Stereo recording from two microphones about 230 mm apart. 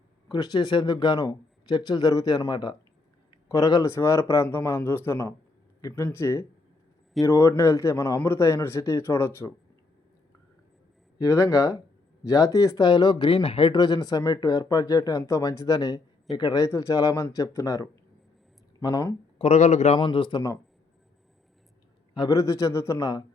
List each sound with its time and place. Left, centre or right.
0.3 s speech: centre
11.2 s speech: centre
19.4 s speech: left
22.1 s speech: centre